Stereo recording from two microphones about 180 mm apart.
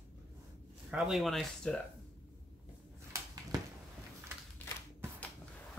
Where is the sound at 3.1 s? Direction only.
20° right (ahead or behind).